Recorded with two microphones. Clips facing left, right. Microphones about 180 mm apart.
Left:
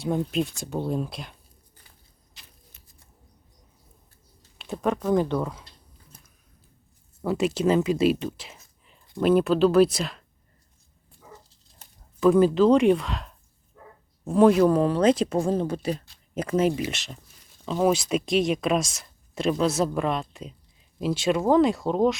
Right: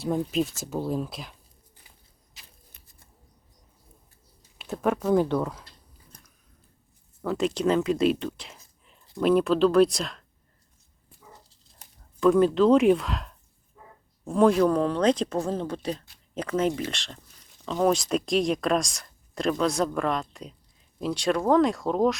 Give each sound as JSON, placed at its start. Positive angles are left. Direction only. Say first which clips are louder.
{"t": 0.0, "sound": "speech", "louder": "even", "side_deg": 0}
{"t": 4.8, "sound": "speech", "louder": "right 1 dB", "side_deg": -5}
{"t": 6.1, "sound": "a sound", "louder": "even", "side_deg": 5}
{"t": 7.2, "sound": "speech", "louder": "left 2 dB", "side_deg": 10}
{"t": 12.2, "sound": "speech", "louder": "left 1 dB", "side_deg": 5}
{"t": 13.8, "sound": "dog", "louder": "left 3 dB", "side_deg": 65}
{"t": 14.3, "sound": "speech", "louder": "left 3 dB", "side_deg": 5}